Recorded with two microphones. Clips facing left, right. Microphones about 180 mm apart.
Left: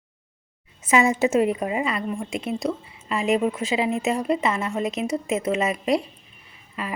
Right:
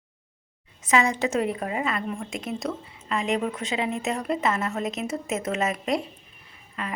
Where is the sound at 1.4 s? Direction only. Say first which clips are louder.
Left 5 dB; 20° left (ahead or behind).